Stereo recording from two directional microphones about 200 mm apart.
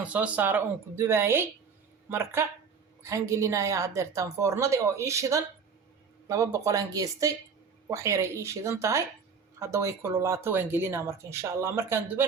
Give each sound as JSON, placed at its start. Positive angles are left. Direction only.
{"t": 0.0, "sound": "speech", "side_deg": -5}